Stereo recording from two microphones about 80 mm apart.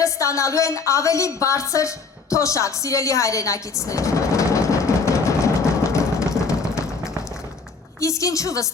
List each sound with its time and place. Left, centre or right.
0.0 s a woman's voice: left
2.3 s a sound: left
8.0 s a woman's voice: left